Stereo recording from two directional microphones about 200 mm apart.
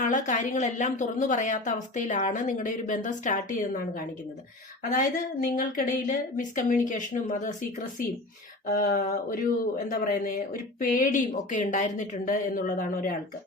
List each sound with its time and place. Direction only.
0.0 s a woman's voice: 40° left (ahead or behind)
4.9 s a woman's voice: 40° left (ahead or behind)